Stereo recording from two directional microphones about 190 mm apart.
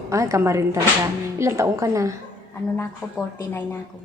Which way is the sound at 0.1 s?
15° right (ahead or behind).